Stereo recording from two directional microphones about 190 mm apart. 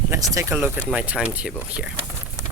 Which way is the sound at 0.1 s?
15° right (ahead or behind).